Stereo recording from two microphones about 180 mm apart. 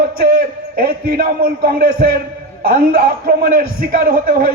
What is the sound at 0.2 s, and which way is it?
A man's voice, 55° right (ahead or behind).